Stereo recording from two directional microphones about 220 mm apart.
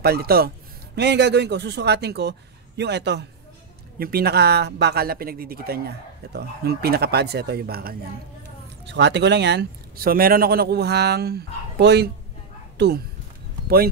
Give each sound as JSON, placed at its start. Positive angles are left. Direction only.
{"t": 0.0, "sound": "speech", "side_deg": -45}